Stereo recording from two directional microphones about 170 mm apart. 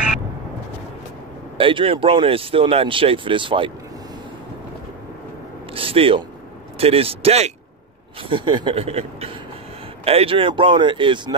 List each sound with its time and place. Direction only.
1.6 s speech: 30° right (ahead or behind)
5.8 s a sound: 35° right (ahead or behind)
6.8 s speech: 35° right (ahead or behind)